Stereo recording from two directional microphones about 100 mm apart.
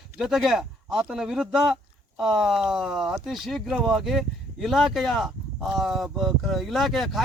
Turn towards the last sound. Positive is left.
turn(degrees=0)  # may be behind; listen again after turning